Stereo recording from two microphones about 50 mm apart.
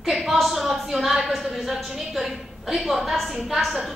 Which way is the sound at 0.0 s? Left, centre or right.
Centre.